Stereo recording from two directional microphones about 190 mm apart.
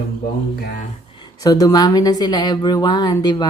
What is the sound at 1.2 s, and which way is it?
A woman's voice, 20° left (ahead or behind).